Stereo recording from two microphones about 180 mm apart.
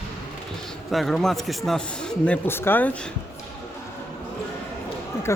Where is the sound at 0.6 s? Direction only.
Centre (ahead or behind).